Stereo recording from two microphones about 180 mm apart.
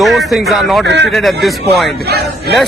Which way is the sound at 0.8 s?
75° right (ahead or behind).